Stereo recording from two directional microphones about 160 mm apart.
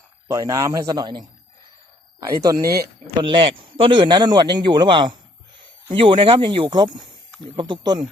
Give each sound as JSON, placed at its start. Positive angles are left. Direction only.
{"t": 0.3, "sound": "a man's voice", "side_deg": -20}
{"t": 2.3, "sound": "a man's voice", "side_deg": -20}